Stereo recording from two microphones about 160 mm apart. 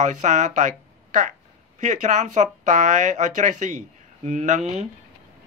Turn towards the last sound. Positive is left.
turn(degrees=-50)  # may be behind; listen again after turning